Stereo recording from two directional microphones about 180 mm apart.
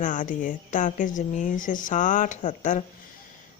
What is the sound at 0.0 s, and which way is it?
Speech, 45° left (ahead or behind).